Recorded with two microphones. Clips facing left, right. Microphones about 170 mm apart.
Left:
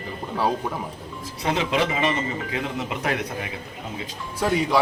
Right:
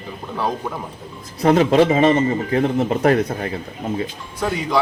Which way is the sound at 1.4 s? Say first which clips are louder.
Right 10 dB; 50° right (ahead or behind).